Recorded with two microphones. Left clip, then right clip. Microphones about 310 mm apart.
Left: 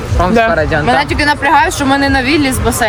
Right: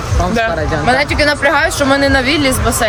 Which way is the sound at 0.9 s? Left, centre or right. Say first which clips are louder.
Right 2 dB; centre.